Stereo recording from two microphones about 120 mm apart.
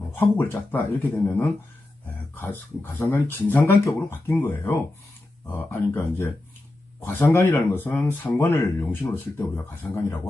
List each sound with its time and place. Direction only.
0.3 s speech: 15° left (ahead or behind)